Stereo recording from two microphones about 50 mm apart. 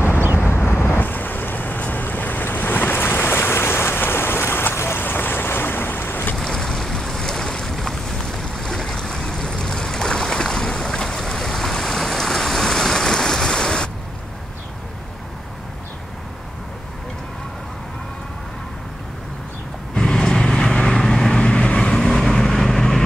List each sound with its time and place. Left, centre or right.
0.5 s boat: left
6.3 s boat: centre
20.0 s vehicle: centre
21.4 s vehicle: left
22.0 s vehicle: centre